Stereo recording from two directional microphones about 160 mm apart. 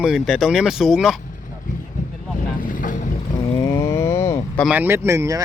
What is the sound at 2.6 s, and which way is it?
Boat, 55° left (ahead or behind).